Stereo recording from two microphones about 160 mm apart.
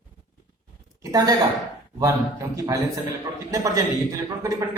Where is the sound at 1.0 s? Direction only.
25° right (ahead or behind).